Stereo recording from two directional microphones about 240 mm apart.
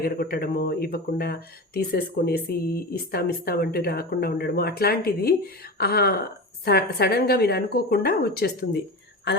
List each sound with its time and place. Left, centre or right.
0.0 s speech: left